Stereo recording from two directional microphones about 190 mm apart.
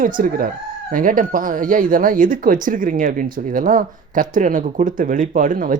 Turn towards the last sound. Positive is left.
turn(degrees=-45)  # may be behind; listen again after turning